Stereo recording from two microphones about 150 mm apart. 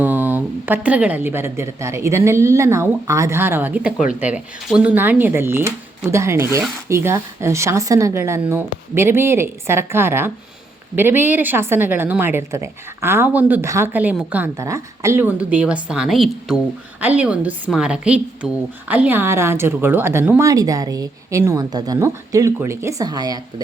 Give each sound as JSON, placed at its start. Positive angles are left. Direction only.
{"t": 0.0, "sound": "a woman's voice", "side_deg": -10}